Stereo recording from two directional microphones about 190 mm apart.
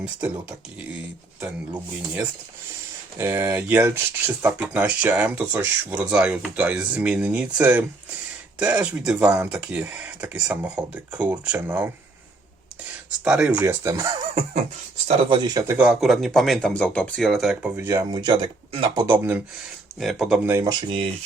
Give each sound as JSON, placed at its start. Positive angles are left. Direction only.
{"t": 1.4, "sound": "speech", "side_deg": -5}
{"t": 13.2, "sound": "speech", "side_deg": -5}
{"t": 15.0, "sound": "speech", "side_deg": -30}
{"t": 15.8, "sound": "speech", "side_deg": -5}
{"t": 20.0, "sound": "speech", "side_deg": 0}